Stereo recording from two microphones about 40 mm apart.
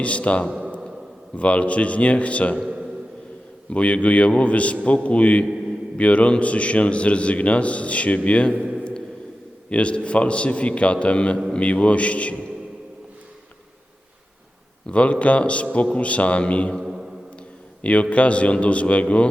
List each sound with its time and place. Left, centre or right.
0.0 s a man's voice: left
2.6 s a sound: centre
3.7 s a man's voice: left
9.6 s a man's voice: left
14.8 s a man's voice: left
16.8 s mantra: centre
17.8 s a man's voice: left